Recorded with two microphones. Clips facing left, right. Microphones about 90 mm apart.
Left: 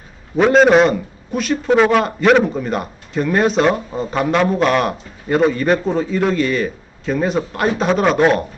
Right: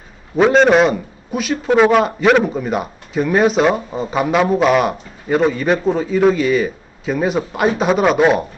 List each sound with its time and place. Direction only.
0.4 s a man's voice: centre (ahead or behind)